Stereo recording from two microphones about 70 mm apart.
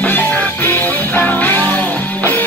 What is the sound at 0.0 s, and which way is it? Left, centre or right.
Music, left.